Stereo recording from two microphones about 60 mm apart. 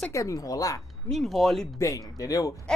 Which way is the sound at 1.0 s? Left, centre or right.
Centre.